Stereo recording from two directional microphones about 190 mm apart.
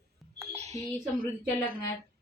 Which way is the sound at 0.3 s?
35° right (ahead or behind).